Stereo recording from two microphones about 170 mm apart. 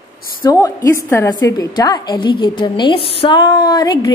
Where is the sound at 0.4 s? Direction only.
20° left (ahead or behind).